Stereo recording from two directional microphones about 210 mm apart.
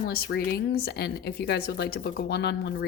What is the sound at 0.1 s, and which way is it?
Speech, 50° left (ahead or behind).